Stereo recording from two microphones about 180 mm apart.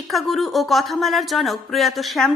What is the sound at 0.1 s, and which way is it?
Speech, centre (ahead or behind).